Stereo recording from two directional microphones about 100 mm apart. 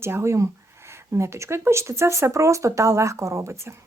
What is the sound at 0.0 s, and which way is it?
Speech, 25° right (ahead or behind).